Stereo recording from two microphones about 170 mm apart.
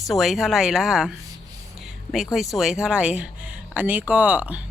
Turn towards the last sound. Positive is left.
turn(degrees=-10)  # may be behind; listen again after turning